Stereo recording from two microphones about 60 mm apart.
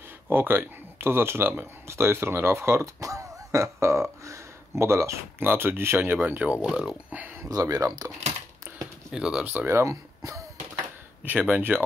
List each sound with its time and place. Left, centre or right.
0.3 s speech: right
5.4 s speech: right
6.2 s speech: right
6.6 s speech: centre
7.1 s a sound: right
7.4 s speech: right
9.1 s speech: centre
9.4 s speech: right
9.8 s speech: right
11.2 s speech: right